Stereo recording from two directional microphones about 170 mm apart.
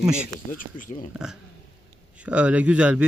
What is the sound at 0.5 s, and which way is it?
Speech, 50° left (ahead or behind).